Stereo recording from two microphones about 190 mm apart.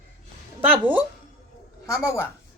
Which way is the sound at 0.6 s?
10° right (ahead or behind).